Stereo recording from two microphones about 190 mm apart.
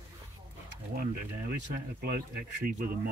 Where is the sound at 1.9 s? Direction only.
55° right (ahead or behind).